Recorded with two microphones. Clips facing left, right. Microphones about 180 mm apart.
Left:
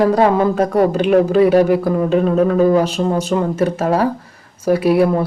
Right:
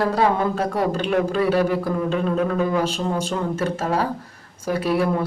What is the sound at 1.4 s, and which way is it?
Speech, 40° left (ahead or behind).